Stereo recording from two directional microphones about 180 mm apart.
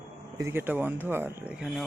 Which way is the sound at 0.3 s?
15° right (ahead or behind).